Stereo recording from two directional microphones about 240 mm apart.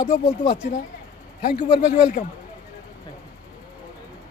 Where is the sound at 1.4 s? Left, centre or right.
Left.